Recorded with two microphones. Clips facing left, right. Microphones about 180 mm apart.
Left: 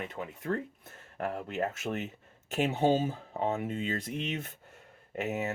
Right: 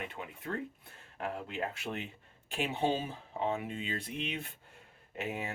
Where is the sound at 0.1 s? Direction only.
45° left (ahead or behind).